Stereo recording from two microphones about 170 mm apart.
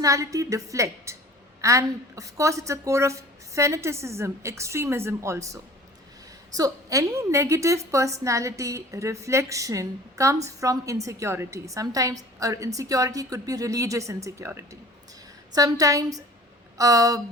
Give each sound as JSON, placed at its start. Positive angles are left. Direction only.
{"t": 0.0, "sound": "a woman's voice", "side_deg": -20}
{"t": 6.6, "sound": "a woman's voice", "side_deg": -20}